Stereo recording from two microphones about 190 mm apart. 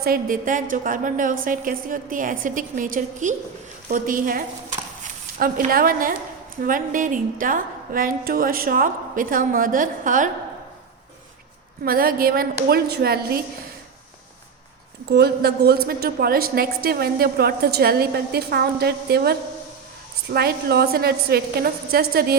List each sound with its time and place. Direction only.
0.0 s a woman's voice: 50° right (ahead or behind)
11.9 s a woman's voice: 50° right (ahead or behind)
15.0 s a woman's voice: 60° right (ahead or behind)